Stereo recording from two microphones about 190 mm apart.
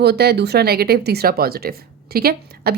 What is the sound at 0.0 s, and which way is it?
Speech, 60° right (ahead or behind).